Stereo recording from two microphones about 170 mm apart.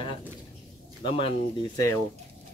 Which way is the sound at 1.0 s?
30° left (ahead or behind).